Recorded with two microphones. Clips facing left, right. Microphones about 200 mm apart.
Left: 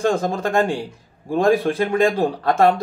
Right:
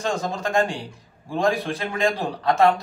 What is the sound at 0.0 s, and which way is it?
A man's voice, 55° left (ahead or behind).